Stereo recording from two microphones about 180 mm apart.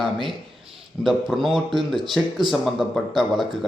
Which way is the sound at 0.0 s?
Centre (ahead or behind).